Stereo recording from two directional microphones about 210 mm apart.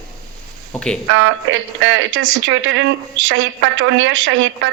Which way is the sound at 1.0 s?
75° right (ahead or behind).